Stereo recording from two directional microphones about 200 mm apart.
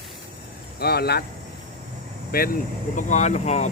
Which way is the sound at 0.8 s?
50° left (ahead or behind).